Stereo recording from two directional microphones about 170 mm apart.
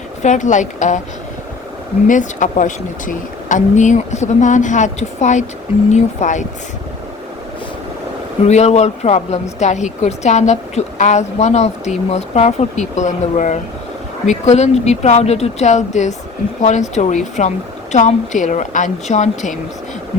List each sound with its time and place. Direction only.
0.2 s speech: 45° left (ahead or behind)
2.0 s speech: 50° left (ahead or behind)
8.4 s speech: 40° left (ahead or behind)